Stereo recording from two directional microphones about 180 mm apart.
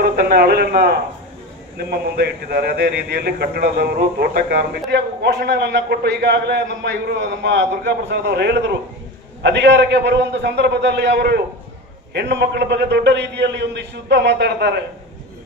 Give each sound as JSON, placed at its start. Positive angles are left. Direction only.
{"t": 0.0, "sound": "a man's voice", "side_deg": -60}